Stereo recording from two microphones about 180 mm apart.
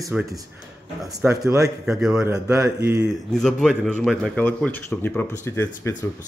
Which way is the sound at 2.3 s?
15° right (ahead or behind).